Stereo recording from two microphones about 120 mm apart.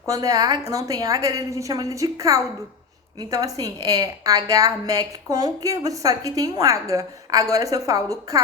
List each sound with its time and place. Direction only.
0.0 s a woman's voice: 30° right (ahead or behind)